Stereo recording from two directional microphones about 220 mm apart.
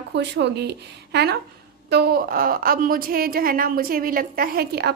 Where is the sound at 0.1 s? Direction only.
50° right (ahead or behind).